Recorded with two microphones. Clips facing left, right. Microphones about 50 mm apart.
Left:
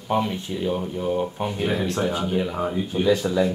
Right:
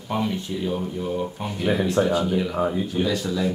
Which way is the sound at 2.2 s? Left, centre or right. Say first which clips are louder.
Right 1 dB; centre.